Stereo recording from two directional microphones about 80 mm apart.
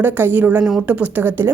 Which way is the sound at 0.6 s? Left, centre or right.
Centre.